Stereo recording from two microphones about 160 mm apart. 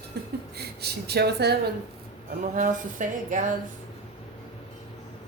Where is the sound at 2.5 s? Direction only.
55° right (ahead or behind).